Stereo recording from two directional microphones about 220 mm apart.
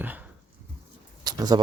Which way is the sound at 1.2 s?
20° right (ahead or behind).